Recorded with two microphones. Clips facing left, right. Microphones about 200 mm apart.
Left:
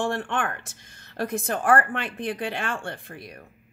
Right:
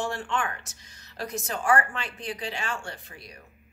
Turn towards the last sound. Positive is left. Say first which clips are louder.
# left 6 dB
turn(degrees=55)  # may be behind; listen again after turning